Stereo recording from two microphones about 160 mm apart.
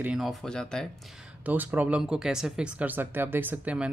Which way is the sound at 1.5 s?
10° right (ahead or behind).